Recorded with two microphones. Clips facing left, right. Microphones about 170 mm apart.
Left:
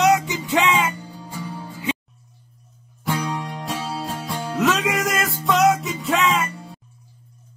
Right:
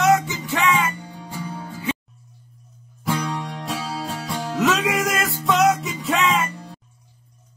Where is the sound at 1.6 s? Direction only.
15° left (ahead or behind).